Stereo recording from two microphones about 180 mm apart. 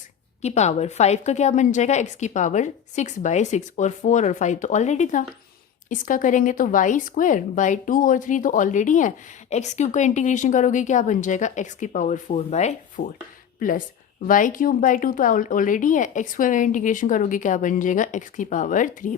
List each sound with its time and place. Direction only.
0.4 s a woman's voice: 40° left (ahead or behind)
13.6 s speech: 50° left (ahead or behind)